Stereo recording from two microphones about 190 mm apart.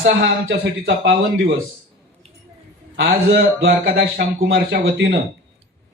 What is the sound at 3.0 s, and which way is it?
A man's voice, 55° right (ahead or behind).